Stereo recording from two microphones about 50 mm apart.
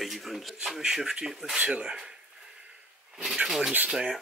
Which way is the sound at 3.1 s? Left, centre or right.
Centre.